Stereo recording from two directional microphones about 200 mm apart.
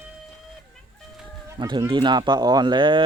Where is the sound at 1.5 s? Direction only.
25° right (ahead or behind).